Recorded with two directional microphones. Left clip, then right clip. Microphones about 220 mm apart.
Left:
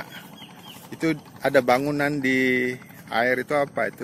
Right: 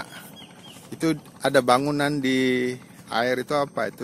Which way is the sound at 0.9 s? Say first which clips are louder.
Even; 20° right (ahead or behind).